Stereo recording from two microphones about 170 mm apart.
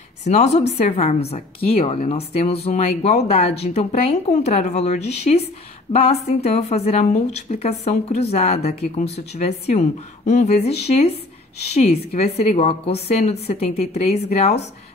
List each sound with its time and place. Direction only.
0.2 s a woman's voice: 40° left (ahead or behind)